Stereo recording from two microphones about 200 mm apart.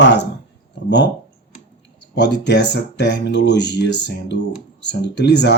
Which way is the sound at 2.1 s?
60° left (ahead or behind).